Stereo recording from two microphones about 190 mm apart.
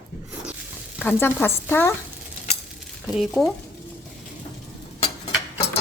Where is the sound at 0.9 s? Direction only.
10° left (ahead or behind).